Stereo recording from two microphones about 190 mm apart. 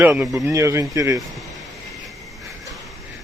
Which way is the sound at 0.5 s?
15° right (ahead or behind).